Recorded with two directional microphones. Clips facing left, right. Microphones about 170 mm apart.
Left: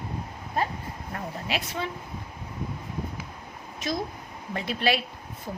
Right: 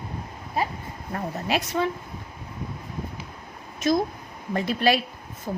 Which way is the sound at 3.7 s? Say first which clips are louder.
Right 8 dB; 45° right (ahead or behind).